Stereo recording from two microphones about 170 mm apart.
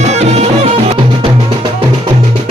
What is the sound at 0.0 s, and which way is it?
Music, 40° right (ahead or behind).